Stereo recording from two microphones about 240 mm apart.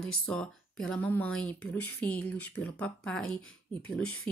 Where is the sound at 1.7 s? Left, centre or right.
Left.